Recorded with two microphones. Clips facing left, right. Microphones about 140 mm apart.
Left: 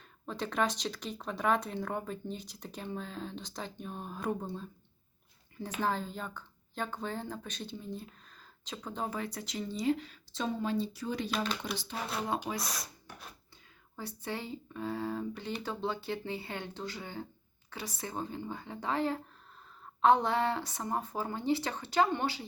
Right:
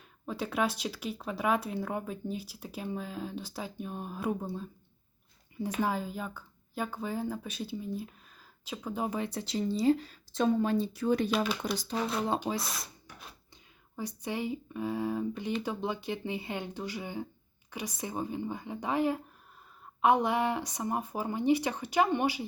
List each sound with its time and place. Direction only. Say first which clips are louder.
0.3 s speech: right 1 dB; 5° right (ahead or behind)
9.0 s speech: right 4 dB; 20° right (ahead or behind); by 10.4 s 40° right (ahead or behind)
10.4 s speech: right 6 dB; 50° right (ahead or behind)
11.6 s speech: right 5 dB; 40° right (ahead or behind)
12.5 s speech: right 2 dB; centre (ahead or behind)
13.9 s speech: right 3 dB; 15° right (ahead or behind)